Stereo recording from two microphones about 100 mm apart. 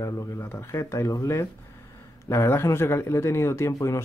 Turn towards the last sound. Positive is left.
turn(degrees=30)  # may be behind; listen again after turning